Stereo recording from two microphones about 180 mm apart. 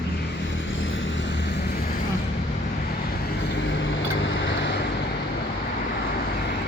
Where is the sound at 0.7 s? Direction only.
90° left.